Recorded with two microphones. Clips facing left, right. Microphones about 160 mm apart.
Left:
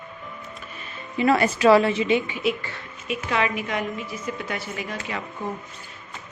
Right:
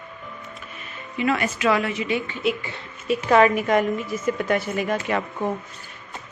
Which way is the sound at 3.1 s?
45° right (ahead or behind).